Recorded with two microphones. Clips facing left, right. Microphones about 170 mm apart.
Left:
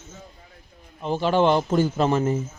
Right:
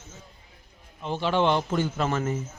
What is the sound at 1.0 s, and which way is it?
Speech, 40° left (ahead or behind).